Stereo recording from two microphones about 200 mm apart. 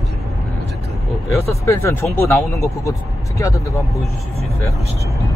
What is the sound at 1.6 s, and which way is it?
Speech, 15° left (ahead or behind).